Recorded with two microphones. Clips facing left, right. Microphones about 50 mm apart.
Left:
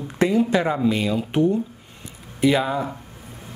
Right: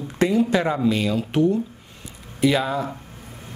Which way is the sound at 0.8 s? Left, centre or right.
Centre.